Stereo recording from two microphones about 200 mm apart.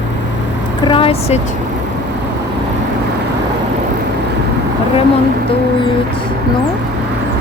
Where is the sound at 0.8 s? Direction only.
25° left (ahead or behind).